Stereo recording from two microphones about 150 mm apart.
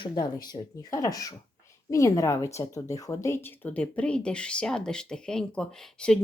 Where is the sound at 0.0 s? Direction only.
30° left (ahead or behind).